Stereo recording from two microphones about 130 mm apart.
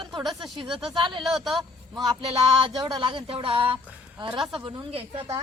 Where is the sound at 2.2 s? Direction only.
40° right (ahead or behind).